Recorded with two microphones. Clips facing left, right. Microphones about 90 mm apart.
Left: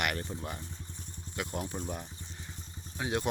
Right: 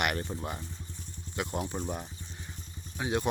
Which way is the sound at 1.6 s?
20° right (ahead or behind).